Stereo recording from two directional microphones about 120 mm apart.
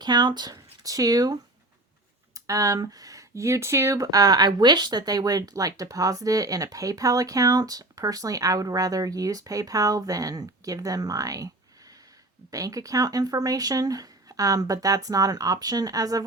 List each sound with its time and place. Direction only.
0.0 s speech: 35° right (ahead or behind)